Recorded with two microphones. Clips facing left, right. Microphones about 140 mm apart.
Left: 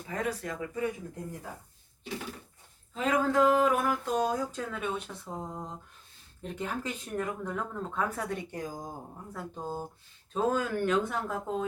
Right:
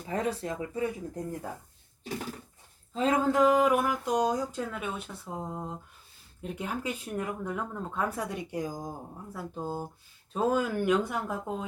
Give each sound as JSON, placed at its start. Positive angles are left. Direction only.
{"t": 0.1, "sound": "speech", "side_deg": -30}
{"t": 2.9, "sound": "speech", "side_deg": -30}
{"t": 3.3, "sound": "speech", "side_deg": -10}